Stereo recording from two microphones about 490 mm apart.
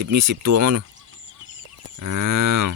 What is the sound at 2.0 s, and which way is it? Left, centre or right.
Speech, right.